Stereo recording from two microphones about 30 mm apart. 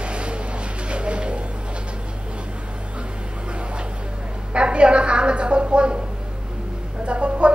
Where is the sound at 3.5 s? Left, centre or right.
Right.